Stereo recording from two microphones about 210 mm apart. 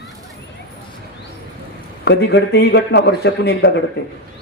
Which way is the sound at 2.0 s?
55° left (ahead or behind).